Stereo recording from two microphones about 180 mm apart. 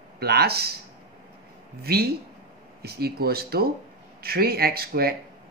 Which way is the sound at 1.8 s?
60° right (ahead or behind).